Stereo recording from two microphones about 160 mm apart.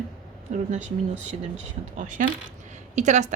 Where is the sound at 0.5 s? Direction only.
45° right (ahead or behind).